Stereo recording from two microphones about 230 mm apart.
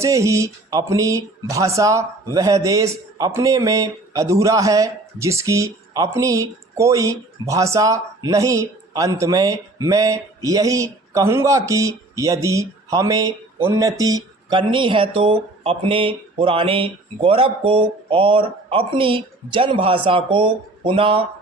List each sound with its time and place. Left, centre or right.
0.0 s speech: centre